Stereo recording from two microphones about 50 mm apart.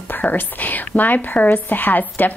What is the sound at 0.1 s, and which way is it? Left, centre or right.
Speech, left.